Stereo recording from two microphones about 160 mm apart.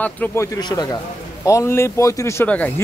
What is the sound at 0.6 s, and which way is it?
Speech, 25° left (ahead or behind).